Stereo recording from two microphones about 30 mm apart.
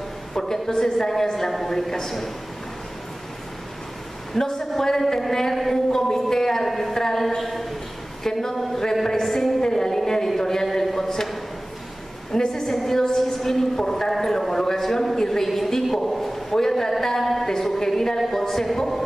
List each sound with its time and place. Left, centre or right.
0.3 s a woman's voice: centre
4.3 s a woman's voice: centre
5.5 s a woman's voice: centre
5.9 s a woman's voice: centre
9.6 s a woman's voice: centre
10.4 s a sound: centre
12.3 s a woman's voice: centre
15.8 s a sound: centre
17.2 s a woman's voice: centre